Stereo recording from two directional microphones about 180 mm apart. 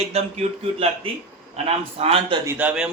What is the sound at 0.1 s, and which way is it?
Speech, 35° right (ahead or behind).